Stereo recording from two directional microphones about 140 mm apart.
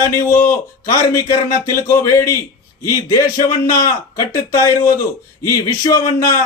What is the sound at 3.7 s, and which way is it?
Speech, 20° left (ahead or behind).